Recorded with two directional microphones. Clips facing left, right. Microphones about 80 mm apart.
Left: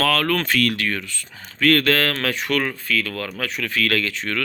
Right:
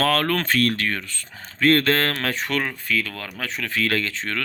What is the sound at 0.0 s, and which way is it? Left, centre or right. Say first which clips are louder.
Speech: left 1 dB; right.